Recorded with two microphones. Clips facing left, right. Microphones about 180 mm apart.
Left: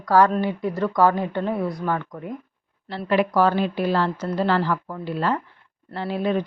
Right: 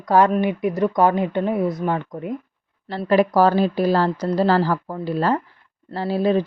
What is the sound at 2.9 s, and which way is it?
Speech, 40° right (ahead or behind).